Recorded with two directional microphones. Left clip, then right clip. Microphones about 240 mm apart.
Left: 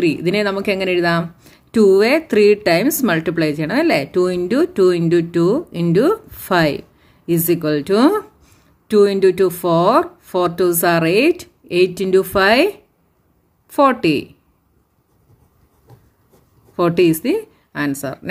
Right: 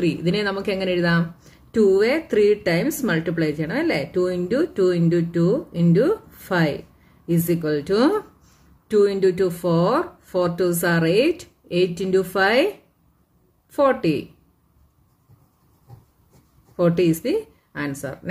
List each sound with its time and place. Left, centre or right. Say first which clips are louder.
0.0 s speech: left 5 dB; left
16.7 s speech: left 5 dB; left